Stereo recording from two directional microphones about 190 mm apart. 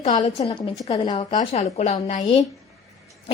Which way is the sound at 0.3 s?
30° left (ahead or behind).